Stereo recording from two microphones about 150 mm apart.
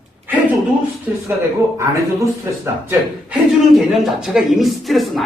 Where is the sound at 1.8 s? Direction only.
20° right (ahead or behind).